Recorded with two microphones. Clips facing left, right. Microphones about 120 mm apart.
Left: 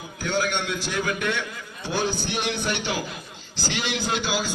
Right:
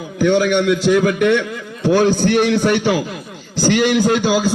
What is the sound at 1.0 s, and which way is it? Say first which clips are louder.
Speech: right 12 dB; 75° right (ahead or behind).